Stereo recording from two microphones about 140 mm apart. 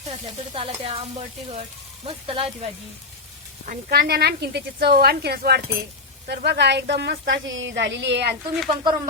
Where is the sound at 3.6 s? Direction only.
90° right.